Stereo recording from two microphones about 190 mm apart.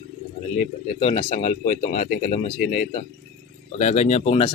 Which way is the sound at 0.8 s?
30° left (ahead or behind).